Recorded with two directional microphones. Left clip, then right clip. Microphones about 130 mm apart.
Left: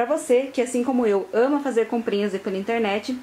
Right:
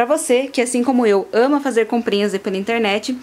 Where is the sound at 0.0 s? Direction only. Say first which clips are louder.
Right 4 dB; 45° right (ahead or behind).